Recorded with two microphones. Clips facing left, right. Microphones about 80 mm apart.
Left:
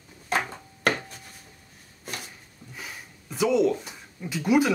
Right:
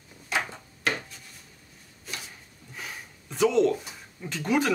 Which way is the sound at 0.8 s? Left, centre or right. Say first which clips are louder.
Left 4 dB; left.